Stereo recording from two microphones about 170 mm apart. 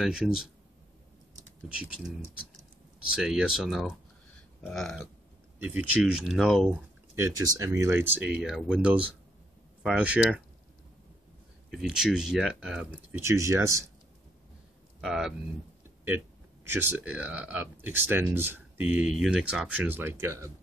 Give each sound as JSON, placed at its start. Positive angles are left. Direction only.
{"t": 0.0, "sound": "speech", "side_deg": -5}
{"t": 3.2, "sound": "speech", "side_deg": 0}
{"t": 5.6, "sound": "speech", "side_deg": -10}
{"t": 7.2, "sound": "speech", "side_deg": -20}
{"t": 11.8, "sound": "speech", "side_deg": -5}
{"t": 13.2, "sound": "speech", "side_deg": -15}
{"t": 15.0, "sound": "speech", "side_deg": -5}
{"t": 16.6, "sound": "speech", "side_deg": -10}